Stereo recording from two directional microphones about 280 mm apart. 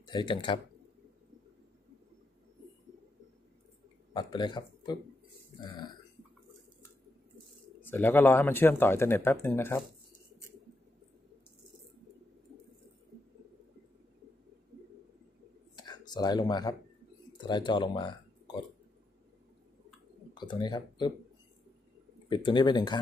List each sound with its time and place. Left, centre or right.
0.0 s speech: centre
4.1 s speech: centre
5.6 s burping: centre
7.9 s speech: centre
15.7 s a sound: centre
20.3 s speech: centre
22.3 s speech: centre